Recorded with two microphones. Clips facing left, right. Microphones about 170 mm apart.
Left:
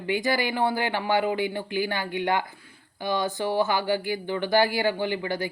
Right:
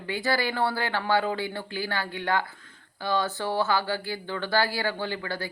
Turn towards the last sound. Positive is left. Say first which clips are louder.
# left 4 dB
turn(degrees=15)  # may be behind; listen again after turning